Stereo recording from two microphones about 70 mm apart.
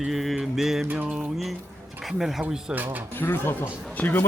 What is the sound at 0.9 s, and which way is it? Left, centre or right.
Mantra, right.